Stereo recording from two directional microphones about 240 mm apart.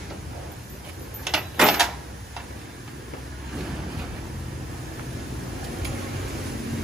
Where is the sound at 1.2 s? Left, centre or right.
Centre.